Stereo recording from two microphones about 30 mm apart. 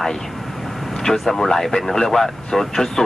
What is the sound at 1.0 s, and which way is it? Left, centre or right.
Speech, centre.